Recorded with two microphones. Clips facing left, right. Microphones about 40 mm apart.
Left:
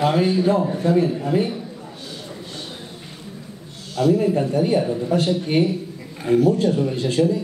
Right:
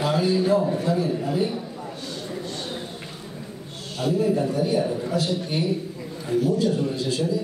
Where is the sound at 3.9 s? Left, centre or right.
Left.